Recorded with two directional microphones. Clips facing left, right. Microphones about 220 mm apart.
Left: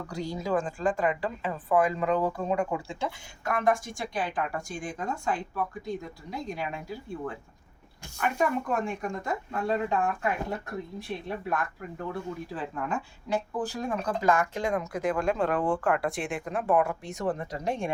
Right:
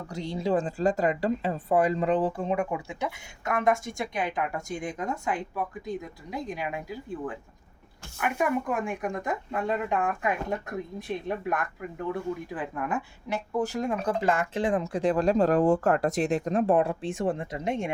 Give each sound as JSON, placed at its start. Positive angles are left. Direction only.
{"t": 0.1, "sound": "speech", "side_deg": -30}
{"t": 8.2, "sound": "speech", "side_deg": -10}
{"t": 16.7, "sound": "speech", "side_deg": -30}